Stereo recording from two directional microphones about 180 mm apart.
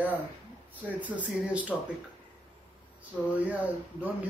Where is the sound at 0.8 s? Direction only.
10° right (ahead or behind).